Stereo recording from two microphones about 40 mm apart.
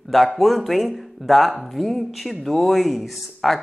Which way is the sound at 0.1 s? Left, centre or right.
Centre.